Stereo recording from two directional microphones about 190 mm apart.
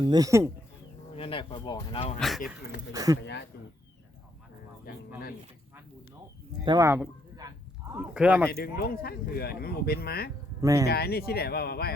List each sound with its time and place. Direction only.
0.0 s speech: 20° right (ahead or behind)
1.1 s speech: 30° left (ahead or behind)
2.1 s speech: centre (ahead or behind)
2.6 s speech: 55° left (ahead or behind)
2.9 s speech: 20° right (ahead or behind)
6.7 s speech: 15° right (ahead or behind)
8.4 s speech: 55° left (ahead or behind)
10.6 s speech: 15° right (ahead or behind)
10.8 s speech: 55° left (ahead or behind)